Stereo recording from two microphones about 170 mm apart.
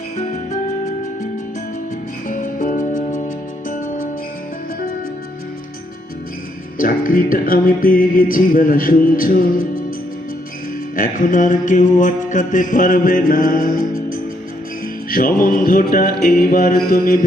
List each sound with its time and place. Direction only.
0.2 s music: 45° left (ahead or behind)
2.3 s music: 50° left (ahead or behind)
6.7 s music: 55° left (ahead or behind)
10.9 s mantra: 55° left (ahead or behind)
15.1 s music: 55° left (ahead or behind)